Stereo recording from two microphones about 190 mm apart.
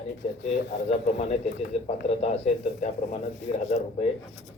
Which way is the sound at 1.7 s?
35° left (ahead or behind).